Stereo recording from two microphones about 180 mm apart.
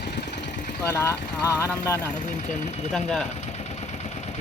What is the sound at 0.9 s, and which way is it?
Speech, 15° left (ahead or behind).